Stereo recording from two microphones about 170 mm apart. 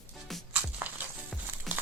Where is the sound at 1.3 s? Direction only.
10° right (ahead or behind).